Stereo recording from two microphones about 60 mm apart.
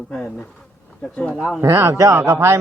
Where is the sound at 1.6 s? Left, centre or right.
Right.